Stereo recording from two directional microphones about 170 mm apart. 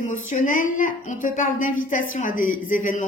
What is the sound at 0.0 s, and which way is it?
A woman's voice, 50° left (ahead or behind).